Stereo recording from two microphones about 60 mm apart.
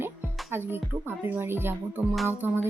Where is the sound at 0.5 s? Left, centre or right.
Right.